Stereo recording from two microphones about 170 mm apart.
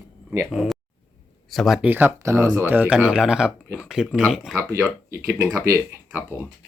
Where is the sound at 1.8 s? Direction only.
10° right (ahead or behind).